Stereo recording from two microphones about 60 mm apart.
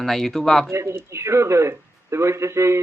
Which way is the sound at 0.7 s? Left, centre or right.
Right.